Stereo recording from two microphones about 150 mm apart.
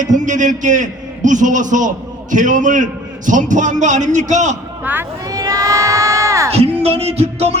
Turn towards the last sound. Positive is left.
turn(degrees=-45)  # may be behind; listen again after turning